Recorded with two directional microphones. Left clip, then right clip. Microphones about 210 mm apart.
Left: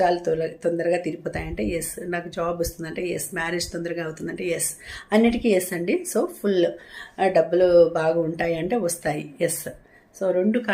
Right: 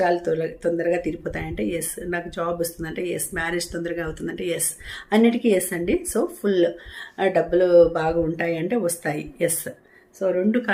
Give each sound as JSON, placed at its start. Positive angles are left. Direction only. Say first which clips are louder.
{"t": 0.0, "sound": "speech", "louder": "even", "side_deg": -10}